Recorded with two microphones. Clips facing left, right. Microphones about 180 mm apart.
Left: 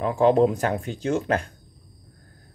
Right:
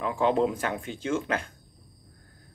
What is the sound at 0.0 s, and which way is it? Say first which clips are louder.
Speech: left 6 dB; 40° left (ahead or behind).